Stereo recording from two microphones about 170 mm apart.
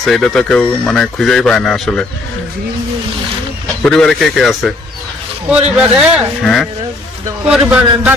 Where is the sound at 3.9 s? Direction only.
5° left (ahead or behind).